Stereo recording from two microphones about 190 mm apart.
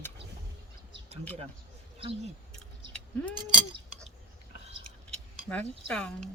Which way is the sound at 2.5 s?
5° left (ahead or behind).